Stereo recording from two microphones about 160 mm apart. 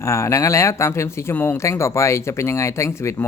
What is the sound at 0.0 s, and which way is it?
Speech, 20° left (ahead or behind).